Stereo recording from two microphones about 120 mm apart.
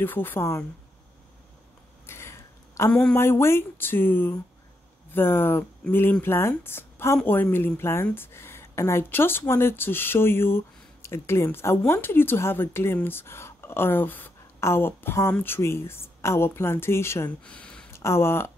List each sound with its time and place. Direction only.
0.0 s a woman's voice: 15° left (ahead or behind)
2.0 s a sound: 20° left (ahead or behind)
2.9 s a woman's voice: 5° left (ahead or behind)
3.2 s a woman's voice: 20° left (ahead or behind)
17.5 s a sound: 10° left (ahead or behind)
17.9 s speech: 20° left (ahead or behind)